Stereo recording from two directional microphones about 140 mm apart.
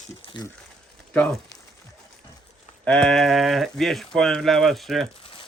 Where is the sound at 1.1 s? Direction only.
5° left (ahead or behind).